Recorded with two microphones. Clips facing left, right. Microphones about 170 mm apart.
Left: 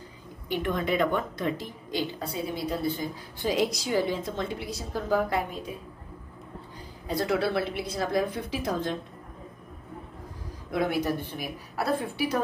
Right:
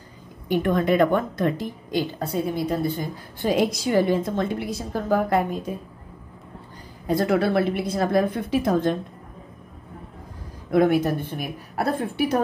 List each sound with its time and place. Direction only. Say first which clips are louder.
0.5 s a woman's voice: right 7 dB; 50° right (ahead or behind)
7.1 s a woman's voice: right 6 dB; 50° right (ahead or behind)
10.7 s a woman's voice: right 8 dB; 50° right (ahead or behind)